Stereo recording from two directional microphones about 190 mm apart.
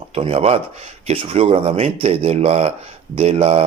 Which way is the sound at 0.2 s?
30° right (ahead or behind).